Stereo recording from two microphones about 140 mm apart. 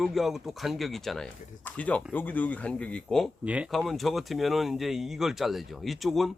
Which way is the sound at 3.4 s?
10° right (ahead or behind).